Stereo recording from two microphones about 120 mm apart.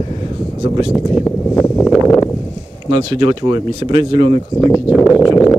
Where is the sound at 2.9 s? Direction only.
40° right (ahead or behind).